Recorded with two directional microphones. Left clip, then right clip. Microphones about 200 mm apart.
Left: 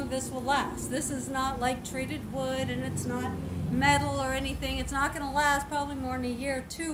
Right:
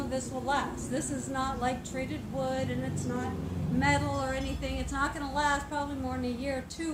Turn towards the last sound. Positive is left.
turn(degrees=15)  # may be behind; listen again after turning